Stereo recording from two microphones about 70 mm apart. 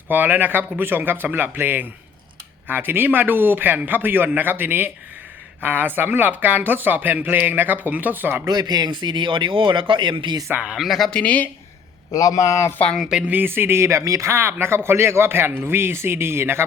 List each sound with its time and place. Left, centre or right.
0.1 s speech: right
8.4 s speech: right
10.8 s speech: centre
11.1 s speech: centre
12.1 s a man's voice: left
13.1 s speech: centre
13.3 s speech: right